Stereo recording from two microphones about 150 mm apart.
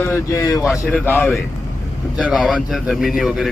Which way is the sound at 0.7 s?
15° left (ahead or behind).